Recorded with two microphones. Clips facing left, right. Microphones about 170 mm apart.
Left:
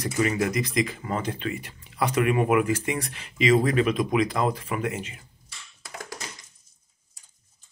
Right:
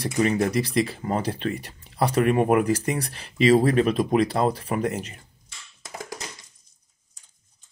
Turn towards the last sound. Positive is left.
turn(degrees=-20)  # may be behind; listen again after turning